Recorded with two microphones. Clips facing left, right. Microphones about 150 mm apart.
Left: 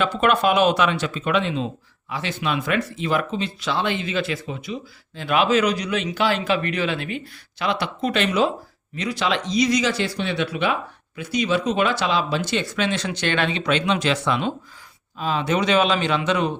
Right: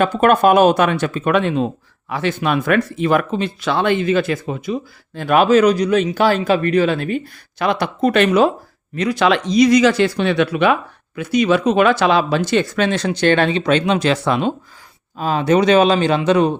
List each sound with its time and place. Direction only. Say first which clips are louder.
0.0 s a man's voice: right 6 dB; 50° right (ahead or behind)